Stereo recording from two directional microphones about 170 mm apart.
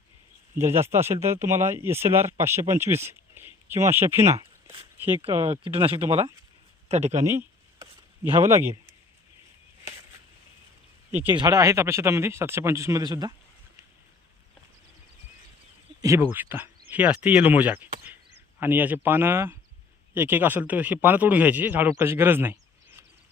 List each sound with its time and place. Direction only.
0.5 s speech: 15° right (ahead or behind)
5.5 s speech: 35° right (ahead or behind)
7.3 s a sound: 15° right (ahead or behind)
11.3 s speech: 20° right (ahead or behind)
16.0 s speech: 15° right (ahead or behind)